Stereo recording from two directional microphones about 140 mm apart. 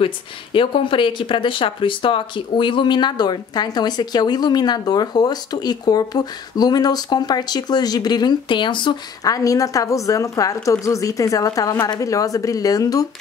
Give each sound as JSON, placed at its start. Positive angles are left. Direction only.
{"t": 0.0, "sound": "speech", "side_deg": 40}